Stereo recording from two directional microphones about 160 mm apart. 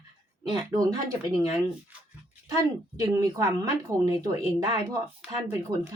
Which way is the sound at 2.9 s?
20° right (ahead or behind).